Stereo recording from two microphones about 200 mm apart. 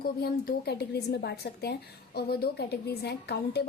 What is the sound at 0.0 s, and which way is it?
A woman's voice, 50° left (ahead or behind).